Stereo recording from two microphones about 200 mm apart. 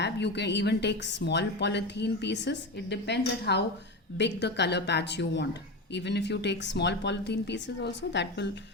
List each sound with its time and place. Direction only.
0.0 s a woman's voice: 60° left (ahead or behind)